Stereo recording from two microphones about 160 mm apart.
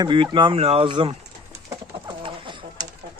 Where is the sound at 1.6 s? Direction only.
30° right (ahead or behind).